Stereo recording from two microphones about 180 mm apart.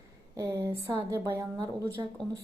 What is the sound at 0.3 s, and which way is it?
A woman's voice, 15° right (ahead or behind).